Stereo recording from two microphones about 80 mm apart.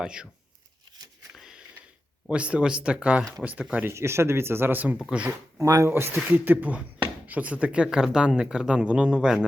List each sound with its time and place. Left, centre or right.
0.0 s speech: centre
2.3 s speech: centre
3.8 s speech: right
5.5 s speech: right
5.9 s speech: right; by 9.5 s centre